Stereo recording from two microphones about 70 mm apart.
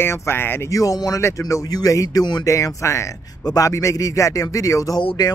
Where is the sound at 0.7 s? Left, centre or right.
Left.